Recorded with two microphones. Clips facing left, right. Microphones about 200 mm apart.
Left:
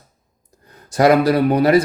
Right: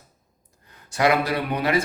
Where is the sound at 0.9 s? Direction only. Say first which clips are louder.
Left 8 dB; 40° left (ahead or behind).